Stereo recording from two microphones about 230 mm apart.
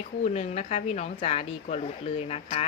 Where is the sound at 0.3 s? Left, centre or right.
Left.